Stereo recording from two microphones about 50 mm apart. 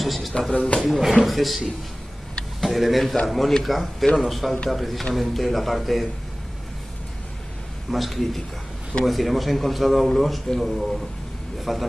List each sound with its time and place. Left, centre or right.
0.0 s a man's voice: centre
0.5 s speech: centre
0.8 s a man's voice: centre
7.9 s a man's voice: centre